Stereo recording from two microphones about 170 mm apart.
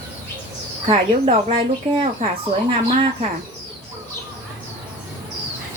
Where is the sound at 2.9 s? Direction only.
35° right (ahead or behind).